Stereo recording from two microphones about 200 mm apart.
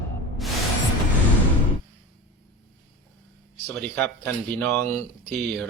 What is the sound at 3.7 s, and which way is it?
Speech, 5° left (ahead or behind).